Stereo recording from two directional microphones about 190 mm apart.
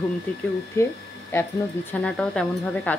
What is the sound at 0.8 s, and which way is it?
Speech, 15° left (ahead or behind).